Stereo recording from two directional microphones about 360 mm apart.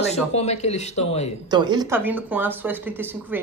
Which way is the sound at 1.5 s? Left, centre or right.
Centre.